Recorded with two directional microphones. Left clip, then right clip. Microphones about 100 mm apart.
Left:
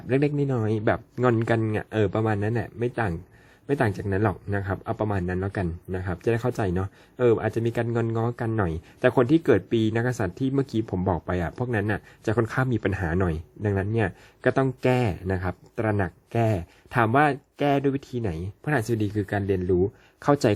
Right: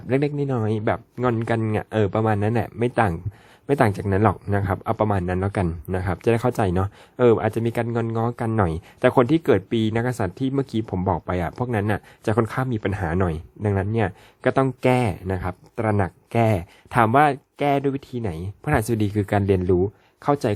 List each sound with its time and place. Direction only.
0.2 s speech: 15° right (ahead or behind)
1.6 s speech: 35° right (ahead or behind)
2.5 s speech: 50° right (ahead or behind)
7.4 s speech: 35° right (ahead or behind)
7.9 s speech: 20° right (ahead or behind)
15.7 s speech: 30° right (ahead or behind); by 19.5 s 55° right (ahead or behind)
20.2 s speech: 5° right (ahead or behind)